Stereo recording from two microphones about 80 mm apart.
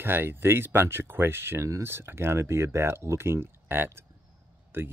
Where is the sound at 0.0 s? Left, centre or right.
Right.